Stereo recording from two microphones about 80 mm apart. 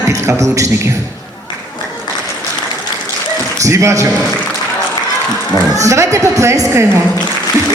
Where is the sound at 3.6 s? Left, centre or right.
Right.